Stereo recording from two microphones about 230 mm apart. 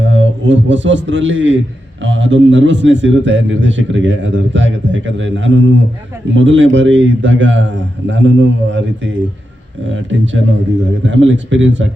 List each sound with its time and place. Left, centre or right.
0.0 s a man's voice: right